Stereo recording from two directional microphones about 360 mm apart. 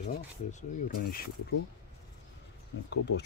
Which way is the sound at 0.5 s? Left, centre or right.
Left.